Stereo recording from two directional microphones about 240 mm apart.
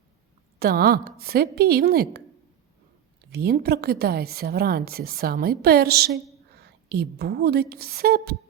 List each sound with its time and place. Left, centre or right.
0.6 s a woman's voice: right
3.3 s a woman's voice: right